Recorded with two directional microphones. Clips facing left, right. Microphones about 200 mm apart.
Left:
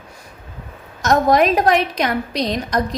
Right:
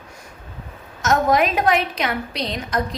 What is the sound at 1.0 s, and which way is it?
A woman's voice, 35° left (ahead or behind).